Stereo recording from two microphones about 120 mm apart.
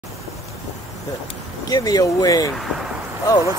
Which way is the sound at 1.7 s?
30° left (ahead or behind).